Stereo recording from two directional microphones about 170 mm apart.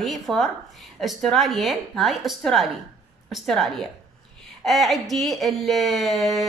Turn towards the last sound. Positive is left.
turn(degrees=0)  # may be behind; listen again after turning